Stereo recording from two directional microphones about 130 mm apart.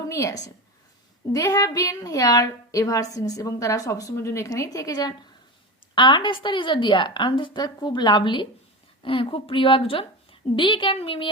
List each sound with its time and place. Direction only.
0.1 s a woman's voice: 25° left (ahead or behind); by 11.3 s 45° left (ahead or behind)